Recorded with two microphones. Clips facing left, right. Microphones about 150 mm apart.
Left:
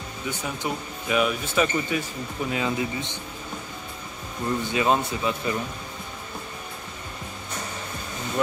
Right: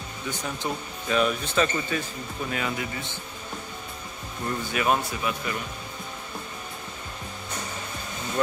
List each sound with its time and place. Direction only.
0.4 s speech: 10° left (ahead or behind)
4.7 s speech: 25° left (ahead or behind)